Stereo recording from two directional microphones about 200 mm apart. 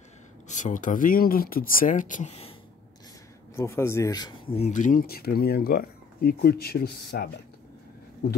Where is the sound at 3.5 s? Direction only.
10° left (ahead or behind); by 7.3 s 50° left (ahead or behind).